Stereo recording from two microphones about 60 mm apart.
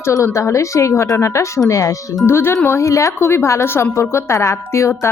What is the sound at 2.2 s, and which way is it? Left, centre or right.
Speech, left.